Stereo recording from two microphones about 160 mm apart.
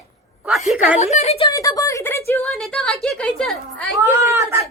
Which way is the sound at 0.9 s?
45° left (ahead or behind).